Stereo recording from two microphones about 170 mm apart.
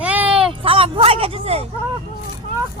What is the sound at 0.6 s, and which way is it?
Speech, 30° right (ahead or behind).